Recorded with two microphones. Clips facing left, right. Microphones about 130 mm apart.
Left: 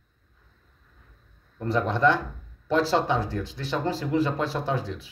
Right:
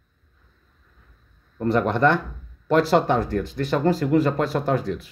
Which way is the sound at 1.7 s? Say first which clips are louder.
Right 3 dB; 60° right (ahead or behind).